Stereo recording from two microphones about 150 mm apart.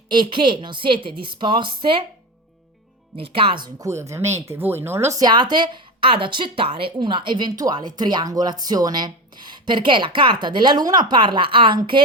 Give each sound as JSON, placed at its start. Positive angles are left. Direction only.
{"t": 0.1, "sound": "a woman's voice", "side_deg": -30}
{"t": 3.2, "sound": "speech", "side_deg": -35}